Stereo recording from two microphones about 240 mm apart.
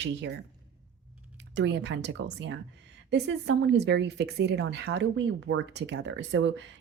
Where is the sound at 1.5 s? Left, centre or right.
Right.